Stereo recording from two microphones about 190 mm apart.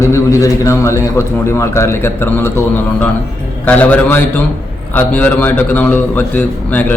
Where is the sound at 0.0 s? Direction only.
15° left (ahead or behind).